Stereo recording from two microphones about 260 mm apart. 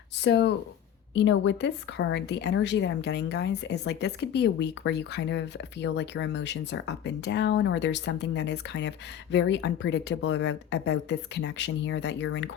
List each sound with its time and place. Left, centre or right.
0.2 s speech: left